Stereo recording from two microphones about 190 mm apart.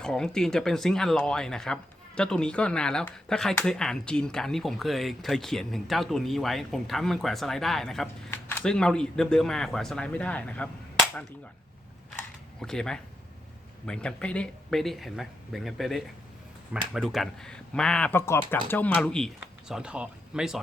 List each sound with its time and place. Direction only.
0.0 s speech: 5° left (ahead or behind)
12.6 s speech: 5° left (ahead or behind)